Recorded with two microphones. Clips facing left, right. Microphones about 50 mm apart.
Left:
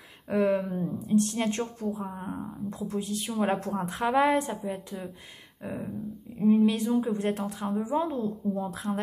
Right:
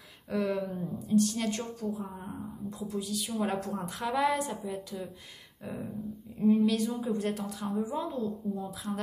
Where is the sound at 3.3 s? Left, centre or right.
Left.